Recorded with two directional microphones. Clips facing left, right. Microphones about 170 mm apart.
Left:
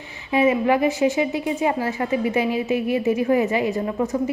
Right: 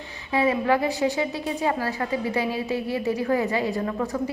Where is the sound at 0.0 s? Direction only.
15° left (ahead or behind).